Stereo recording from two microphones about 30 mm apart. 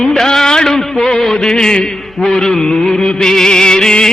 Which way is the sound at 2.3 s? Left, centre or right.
Centre.